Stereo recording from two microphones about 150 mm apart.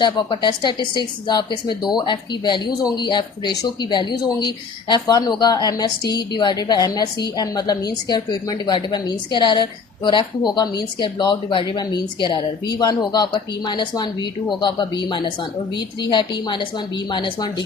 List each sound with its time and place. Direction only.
0.0 s a woman's voice: 30° left (ahead or behind)